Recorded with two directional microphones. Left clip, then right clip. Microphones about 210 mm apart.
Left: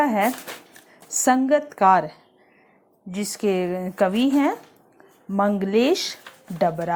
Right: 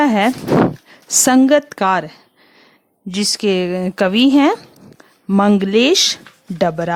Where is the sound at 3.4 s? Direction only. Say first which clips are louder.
Right 2 dB; 45° right (ahead or behind).